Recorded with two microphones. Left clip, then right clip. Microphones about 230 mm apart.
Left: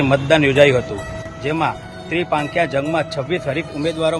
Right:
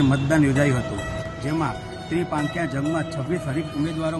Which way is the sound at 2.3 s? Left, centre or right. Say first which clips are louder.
Left 8 dB; left.